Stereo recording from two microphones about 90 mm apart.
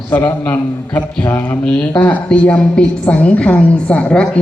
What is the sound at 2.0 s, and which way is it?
A woman's voice, 20° left (ahead or behind).